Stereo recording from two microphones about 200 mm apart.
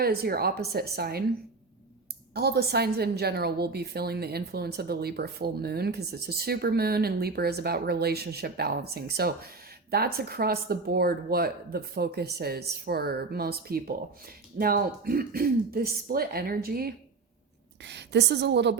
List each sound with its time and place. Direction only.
0.0 s a woman's voice: 50° right (ahead or behind)
2.3 s a woman's voice: 50° right (ahead or behind)
17.8 s a woman's voice: 60° right (ahead or behind)